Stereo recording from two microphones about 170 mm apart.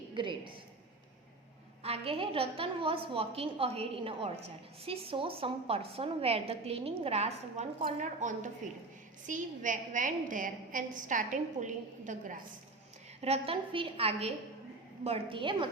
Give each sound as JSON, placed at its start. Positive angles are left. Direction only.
{"t": 0.1, "sound": "a woman's voice", "side_deg": -30}
{"t": 1.8, "sound": "a woman's voice", "side_deg": -35}
{"t": 13.2, "sound": "a woman's voice", "side_deg": -35}